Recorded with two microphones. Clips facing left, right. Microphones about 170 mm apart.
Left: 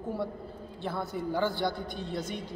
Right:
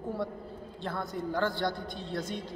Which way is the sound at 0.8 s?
5° left (ahead or behind).